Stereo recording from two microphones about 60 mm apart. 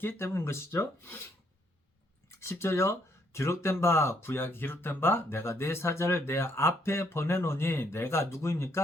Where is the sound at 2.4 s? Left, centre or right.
Left.